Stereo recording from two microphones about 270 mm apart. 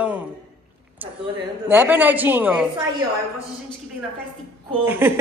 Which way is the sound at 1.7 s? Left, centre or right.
Centre.